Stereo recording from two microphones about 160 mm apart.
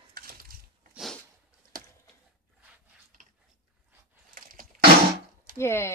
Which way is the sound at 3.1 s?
55° right (ahead or behind).